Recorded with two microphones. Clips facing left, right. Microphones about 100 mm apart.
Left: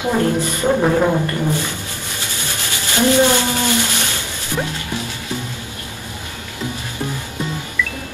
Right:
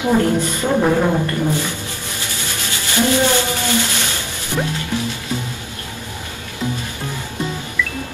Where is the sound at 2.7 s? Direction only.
20° left (ahead or behind).